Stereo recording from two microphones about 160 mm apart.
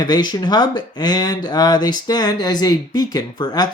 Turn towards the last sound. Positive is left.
turn(degrees=25)  # may be behind; listen again after turning